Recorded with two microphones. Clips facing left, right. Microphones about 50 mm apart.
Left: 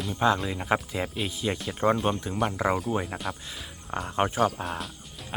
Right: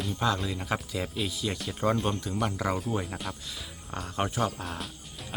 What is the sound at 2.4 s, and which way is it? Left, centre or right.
Speech, centre.